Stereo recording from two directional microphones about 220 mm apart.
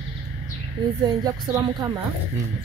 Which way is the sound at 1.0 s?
15° right (ahead or behind).